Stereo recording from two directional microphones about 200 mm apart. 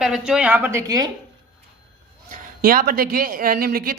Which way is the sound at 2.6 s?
45° right (ahead or behind).